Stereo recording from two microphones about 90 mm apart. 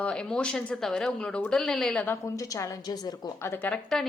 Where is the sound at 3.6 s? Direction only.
20° left (ahead or behind).